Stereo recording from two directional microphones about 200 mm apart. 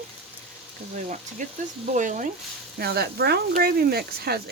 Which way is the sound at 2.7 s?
50° right (ahead or behind).